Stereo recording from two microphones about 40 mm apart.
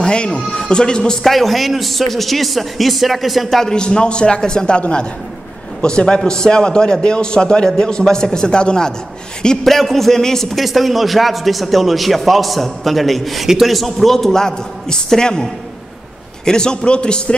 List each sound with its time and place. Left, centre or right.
0.0 s a man's voice: left
1.2 s a man's voice: centre
3.7 s a man's voice: left
9.7 s a man's voice: centre
10.6 s a man's voice: centre
16.4 s a man's voice: centre